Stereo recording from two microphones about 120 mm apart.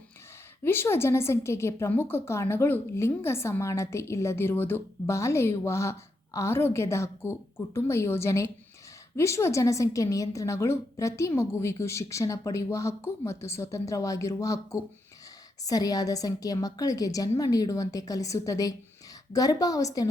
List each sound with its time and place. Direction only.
0.6 s a woman's voice: 20° left (ahead or behind)